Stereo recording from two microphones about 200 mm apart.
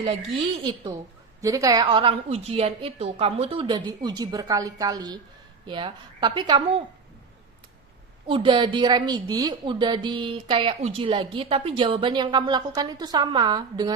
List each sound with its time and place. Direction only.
0.6 s a woman's voice: 20° right (ahead or behind)
8.3 s a woman's voice: 25° right (ahead or behind)